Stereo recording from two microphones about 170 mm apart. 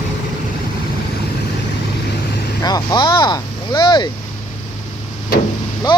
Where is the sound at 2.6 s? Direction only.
25° left (ahead or behind).